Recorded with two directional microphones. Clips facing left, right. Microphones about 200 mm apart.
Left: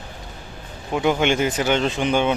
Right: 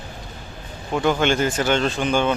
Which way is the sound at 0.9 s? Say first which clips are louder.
Even; 15° left (ahead or behind).